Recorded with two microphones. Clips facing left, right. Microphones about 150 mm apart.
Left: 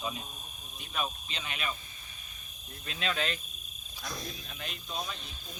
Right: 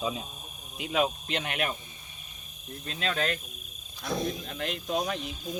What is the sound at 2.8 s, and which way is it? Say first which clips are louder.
Speech: right 3 dB; 40° right (ahead or behind).